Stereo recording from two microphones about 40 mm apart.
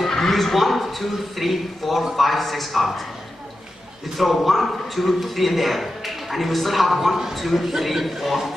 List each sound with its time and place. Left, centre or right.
0.0 s a sound: centre
1.4 s a man's voice: centre
4.5 s a man's voice: centre